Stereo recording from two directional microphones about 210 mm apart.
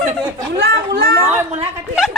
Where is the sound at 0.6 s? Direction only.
50° right (ahead or behind).